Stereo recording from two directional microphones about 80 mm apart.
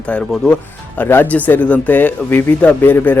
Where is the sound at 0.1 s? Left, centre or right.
Centre.